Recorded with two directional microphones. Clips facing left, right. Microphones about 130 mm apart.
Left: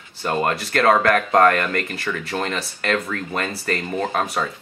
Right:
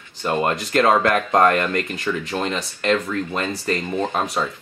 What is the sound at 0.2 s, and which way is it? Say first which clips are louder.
Speech: right 1 dB; 15° right (ahead or behind).